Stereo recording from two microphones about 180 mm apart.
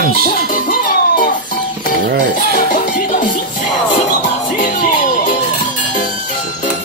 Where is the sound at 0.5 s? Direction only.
45° left (ahead or behind).